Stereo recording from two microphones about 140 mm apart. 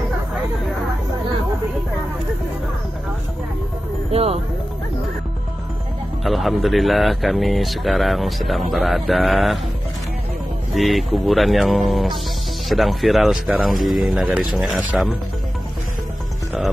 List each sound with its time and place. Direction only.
4.1 s speech: 45° right (ahead or behind)
6.2 s speech: centre (ahead or behind)
10.7 s speech: centre (ahead or behind)